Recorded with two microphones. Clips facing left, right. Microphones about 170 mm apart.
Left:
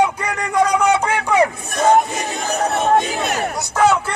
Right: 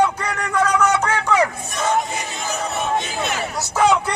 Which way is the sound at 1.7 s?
50° left (ahead or behind).